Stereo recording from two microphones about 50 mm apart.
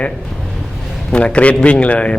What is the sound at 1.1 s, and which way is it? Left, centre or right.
Speech, left.